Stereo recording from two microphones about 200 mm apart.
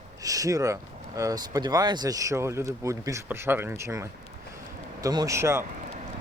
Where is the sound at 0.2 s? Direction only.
15° right (ahead or behind).